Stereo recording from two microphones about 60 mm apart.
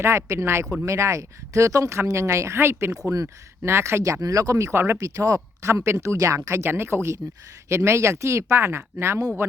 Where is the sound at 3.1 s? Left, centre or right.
Right.